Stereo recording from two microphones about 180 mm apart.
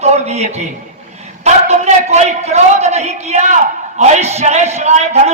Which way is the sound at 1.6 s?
40° right (ahead or behind).